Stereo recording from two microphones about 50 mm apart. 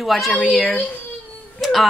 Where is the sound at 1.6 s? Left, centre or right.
Centre.